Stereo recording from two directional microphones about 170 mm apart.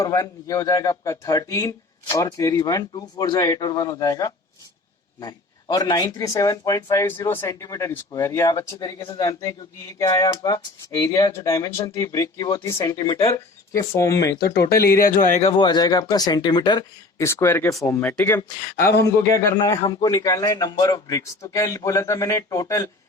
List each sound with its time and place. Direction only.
0.0 s speech: 20° left (ahead or behind)
14.8 s speech: 60° left (ahead or behind)
15.5 s speech: 25° left (ahead or behind)